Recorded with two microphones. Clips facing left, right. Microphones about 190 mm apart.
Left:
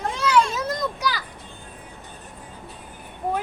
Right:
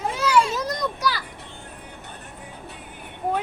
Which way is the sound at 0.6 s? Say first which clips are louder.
Even; centre (ahead or behind).